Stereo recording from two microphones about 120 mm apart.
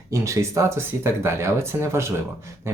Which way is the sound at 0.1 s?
25° right (ahead or behind).